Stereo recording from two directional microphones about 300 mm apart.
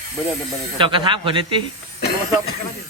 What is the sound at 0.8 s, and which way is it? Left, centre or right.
Speech, centre.